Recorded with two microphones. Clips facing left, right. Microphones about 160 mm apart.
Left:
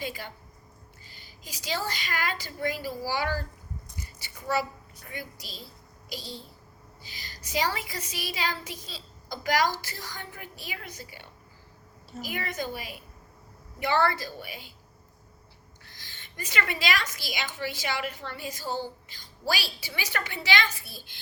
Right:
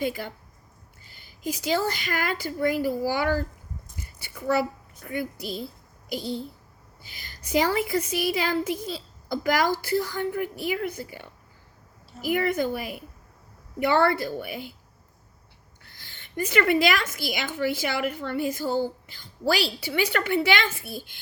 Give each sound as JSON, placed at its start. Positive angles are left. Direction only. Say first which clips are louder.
{"t": 0.0, "sound": "a woman's voice", "louder": "right 7 dB", "side_deg": -50}
{"t": 15.8, "sound": "a woman's voice", "louder": "right 1 dB", "side_deg": -55}